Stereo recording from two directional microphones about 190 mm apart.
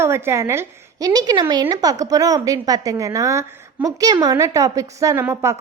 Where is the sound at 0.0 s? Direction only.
15° right (ahead or behind).